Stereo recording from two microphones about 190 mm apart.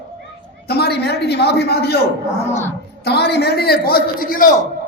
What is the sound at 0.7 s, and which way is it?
A man's voice, 60° left (ahead or behind).